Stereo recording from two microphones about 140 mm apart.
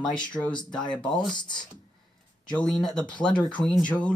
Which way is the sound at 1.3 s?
30° left (ahead or behind).